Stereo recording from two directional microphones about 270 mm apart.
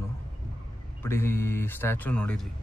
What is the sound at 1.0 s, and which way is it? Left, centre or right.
Speech, centre.